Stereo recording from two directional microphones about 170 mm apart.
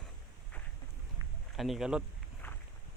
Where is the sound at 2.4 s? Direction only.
15° left (ahead or behind).